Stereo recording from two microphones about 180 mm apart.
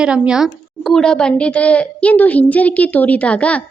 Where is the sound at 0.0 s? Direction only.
5° right (ahead or behind).